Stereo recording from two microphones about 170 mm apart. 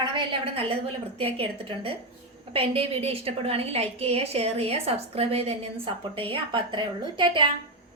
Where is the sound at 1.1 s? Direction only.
35° right (ahead or behind).